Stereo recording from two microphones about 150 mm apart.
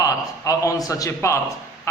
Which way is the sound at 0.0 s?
20° left (ahead or behind).